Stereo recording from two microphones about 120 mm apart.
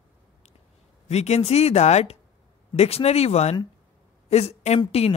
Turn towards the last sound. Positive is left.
turn(degrees=60)  # may be behind; listen again after turning